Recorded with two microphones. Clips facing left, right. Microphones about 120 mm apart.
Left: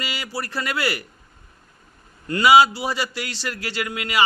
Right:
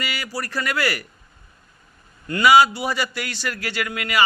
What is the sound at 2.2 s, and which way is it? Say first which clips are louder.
A man's voice: even; 30° left (ahead or behind).